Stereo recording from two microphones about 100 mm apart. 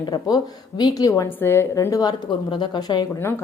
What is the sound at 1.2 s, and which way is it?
Speech, 20° left (ahead or behind).